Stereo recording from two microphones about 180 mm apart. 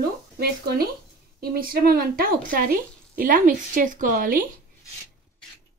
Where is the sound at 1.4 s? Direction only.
55° right (ahead or behind).